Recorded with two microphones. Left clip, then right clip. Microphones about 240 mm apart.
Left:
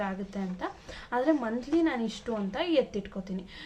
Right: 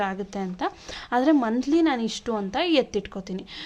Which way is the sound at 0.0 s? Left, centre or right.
Right.